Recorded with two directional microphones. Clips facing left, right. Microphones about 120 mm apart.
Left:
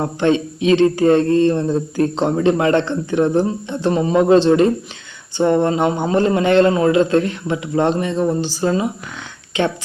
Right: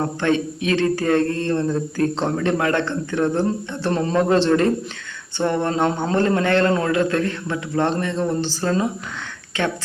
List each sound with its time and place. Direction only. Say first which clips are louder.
0.0 s a man's voice: left 3 dB; 20° left (ahead or behind)